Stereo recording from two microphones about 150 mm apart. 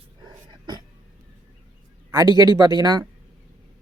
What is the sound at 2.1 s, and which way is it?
Speech, 25° right (ahead or behind).